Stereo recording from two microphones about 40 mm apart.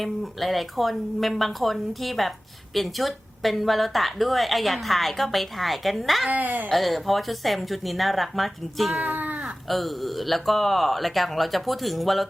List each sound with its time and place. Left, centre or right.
0.0 s a woman's voice: centre
6.3 s speech: right
6.7 s a woman's voice: centre
9.0 s caw: right
9.6 s a woman's voice: centre